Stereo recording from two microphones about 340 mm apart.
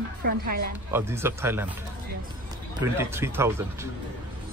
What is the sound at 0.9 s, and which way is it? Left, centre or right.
Speech, centre.